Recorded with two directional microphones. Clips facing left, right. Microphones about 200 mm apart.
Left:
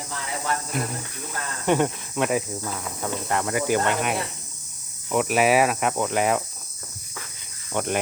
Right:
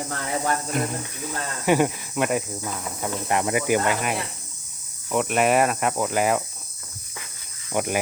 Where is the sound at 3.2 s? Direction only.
15° right (ahead or behind).